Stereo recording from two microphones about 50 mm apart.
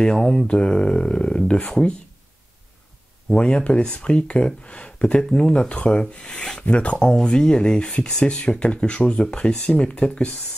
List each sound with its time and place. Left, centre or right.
0.0 s speech: centre
3.3 s speech: centre
6.6 s speech: left
7.0 s speech: centre